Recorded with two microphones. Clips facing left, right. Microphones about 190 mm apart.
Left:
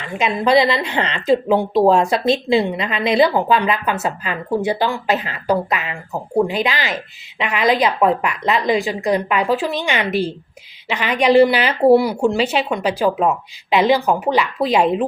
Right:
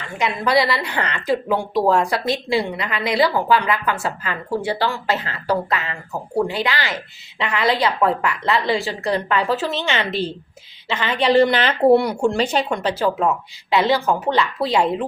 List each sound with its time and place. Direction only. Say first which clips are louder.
0.0 s a woman's voice: left 3 dB; 20° left (ahead or behind)